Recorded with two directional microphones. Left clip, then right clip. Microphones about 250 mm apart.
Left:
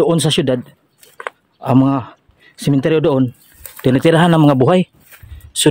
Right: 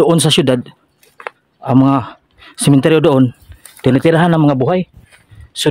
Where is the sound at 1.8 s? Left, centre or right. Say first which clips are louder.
Right 4 dB; centre.